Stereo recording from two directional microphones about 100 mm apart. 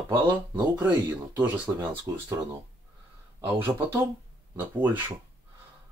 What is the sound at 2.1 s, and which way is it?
Speech, 30° right (ahead or behind).